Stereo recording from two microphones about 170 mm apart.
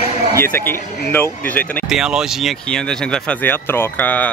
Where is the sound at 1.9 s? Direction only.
5° right (ahead or behind).